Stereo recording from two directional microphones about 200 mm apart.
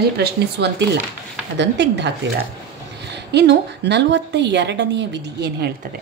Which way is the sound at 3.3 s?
60° right (ahead or behind).